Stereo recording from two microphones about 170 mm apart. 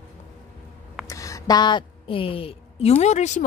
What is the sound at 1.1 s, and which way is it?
A woman's voice, 20° left (ahead or behind).